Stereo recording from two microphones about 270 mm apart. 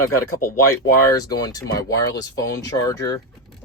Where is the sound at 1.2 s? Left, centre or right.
Centre.